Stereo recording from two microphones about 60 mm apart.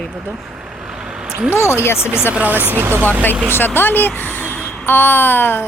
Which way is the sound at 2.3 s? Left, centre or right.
Right.